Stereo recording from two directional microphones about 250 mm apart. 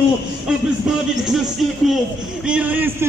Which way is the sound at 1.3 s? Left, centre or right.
Centre.